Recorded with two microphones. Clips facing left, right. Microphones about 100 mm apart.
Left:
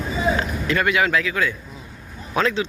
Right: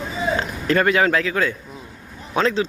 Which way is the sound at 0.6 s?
40° right (ahead or behind).